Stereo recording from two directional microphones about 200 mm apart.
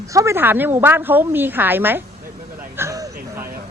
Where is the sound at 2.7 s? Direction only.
15° right (ahead or behind).